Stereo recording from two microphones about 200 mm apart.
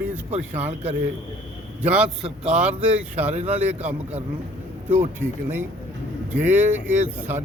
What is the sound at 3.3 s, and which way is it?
Speech, 35° right (ahead or behind).